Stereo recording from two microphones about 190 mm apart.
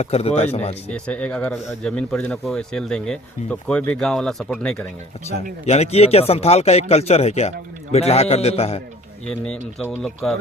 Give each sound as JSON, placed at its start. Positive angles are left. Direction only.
{"t": 0.0, "sound": "speech", "side_deg": 30}
{"t": 0.9, "sound": "speech", "side_deg": 5}
{"t": 5.6, "sound": "speech", "side_deg": 35}
{"t": 9.2, "sound": "speech", "side_deg": 5}